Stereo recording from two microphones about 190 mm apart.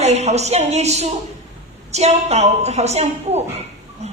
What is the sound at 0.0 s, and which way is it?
A woman's voice, 35° right (ahead or behind).